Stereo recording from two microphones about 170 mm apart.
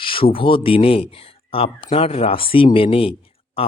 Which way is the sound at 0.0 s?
30° left (ahead or behind).